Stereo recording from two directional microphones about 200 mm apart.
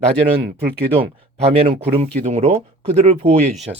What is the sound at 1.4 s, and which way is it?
Speech, 30° right (ahead or behind).